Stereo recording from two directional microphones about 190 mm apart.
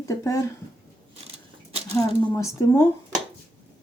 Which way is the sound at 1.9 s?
15° left (ahead or behind).